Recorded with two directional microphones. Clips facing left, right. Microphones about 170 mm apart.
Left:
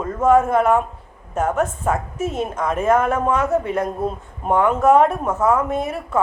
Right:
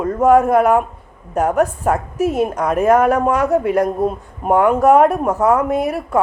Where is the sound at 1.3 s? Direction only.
35° right (ahead or behind).